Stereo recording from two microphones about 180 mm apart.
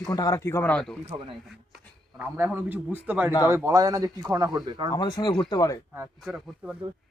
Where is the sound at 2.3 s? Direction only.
10° right (ahead or behind).